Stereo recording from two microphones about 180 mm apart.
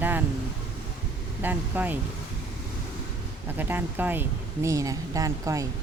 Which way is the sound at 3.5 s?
10° right (ahead or behind).